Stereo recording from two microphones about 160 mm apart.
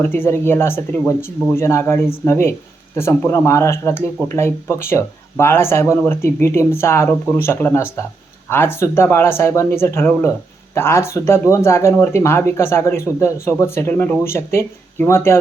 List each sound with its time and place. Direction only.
0.0 s speech: 15° left (ahead or behind)